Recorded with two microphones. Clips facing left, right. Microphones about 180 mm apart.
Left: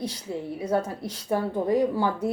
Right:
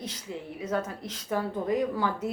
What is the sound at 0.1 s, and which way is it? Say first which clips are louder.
A woman's voice: left 6 dB; 35° left (ahead or behind).